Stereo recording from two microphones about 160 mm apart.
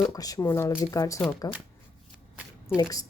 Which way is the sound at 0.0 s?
25° left (ahead or behind).